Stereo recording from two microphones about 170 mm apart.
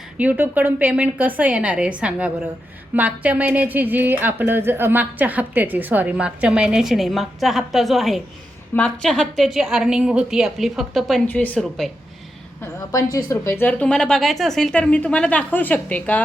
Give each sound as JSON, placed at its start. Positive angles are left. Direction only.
{"t": 0.2, "sound": "a woman's voice", "side_deg": -10}
{"t": 12.6, "sound": "a woman's voice", "side_deg": 20}